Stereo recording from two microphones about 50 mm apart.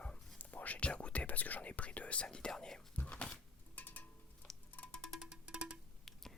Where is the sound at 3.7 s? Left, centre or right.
Left.